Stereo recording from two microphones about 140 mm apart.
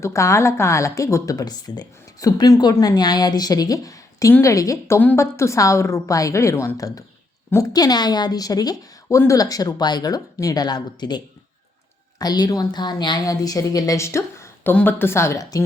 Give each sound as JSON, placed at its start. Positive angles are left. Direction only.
{"t": 0.0, "sound": "speech", "side_deg": 20}
{"t": 12.2, "sound": "speech", "side_deg": 30}